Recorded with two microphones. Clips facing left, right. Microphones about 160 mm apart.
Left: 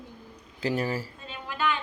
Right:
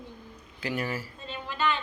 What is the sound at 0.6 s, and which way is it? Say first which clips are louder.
Speech: left 4 dB; 35° left (ahead or behind).